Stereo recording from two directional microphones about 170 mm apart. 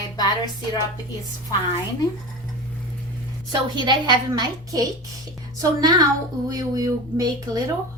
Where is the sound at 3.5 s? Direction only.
25° right (ahead or behind).